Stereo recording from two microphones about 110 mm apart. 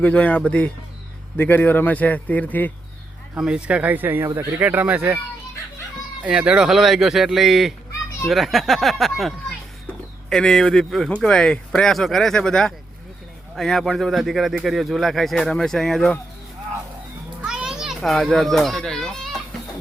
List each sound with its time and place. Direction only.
0.0 s a man's voice: 10° left (ahead or behind)
3.3 s speech: 10° right (ahead or behind)
6.2 s speech: 10° right (ahead or behind)
17.4 s children playing: 5° right (ahead or behind)